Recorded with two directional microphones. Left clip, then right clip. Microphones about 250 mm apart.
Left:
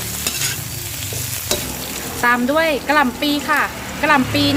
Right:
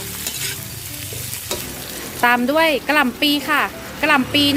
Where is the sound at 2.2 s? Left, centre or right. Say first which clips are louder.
Right 1 dB; right.